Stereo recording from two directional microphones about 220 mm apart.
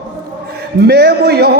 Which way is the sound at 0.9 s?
50° right (ahead or behind).